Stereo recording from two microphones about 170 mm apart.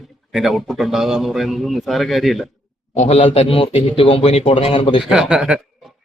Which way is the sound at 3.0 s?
40° left (ahead or behind).